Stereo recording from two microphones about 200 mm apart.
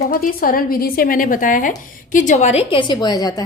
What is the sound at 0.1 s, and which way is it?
Speech, 45° left (ahead or behind).